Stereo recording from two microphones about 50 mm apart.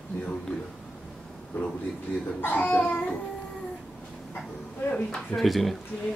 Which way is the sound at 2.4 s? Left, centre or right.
Left.